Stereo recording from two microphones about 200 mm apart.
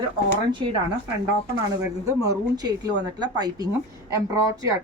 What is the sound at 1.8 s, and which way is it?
A woman's voice, 20° right (ahead or behind).